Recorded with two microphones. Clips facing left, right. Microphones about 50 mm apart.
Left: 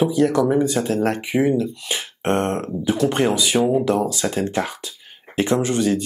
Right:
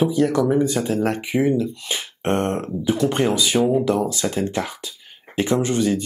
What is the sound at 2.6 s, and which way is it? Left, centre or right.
Speech, centre.